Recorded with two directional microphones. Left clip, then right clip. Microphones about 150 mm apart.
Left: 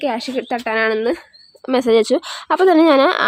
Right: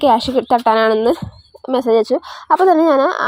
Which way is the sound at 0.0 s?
25° right (ahead or behind).